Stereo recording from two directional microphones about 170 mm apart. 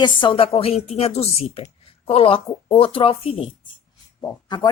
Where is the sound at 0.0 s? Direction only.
30° left (ahead or behind).